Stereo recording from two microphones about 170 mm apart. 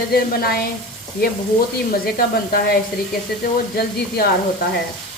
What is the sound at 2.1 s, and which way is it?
Speech, 60° left (ahead or behind).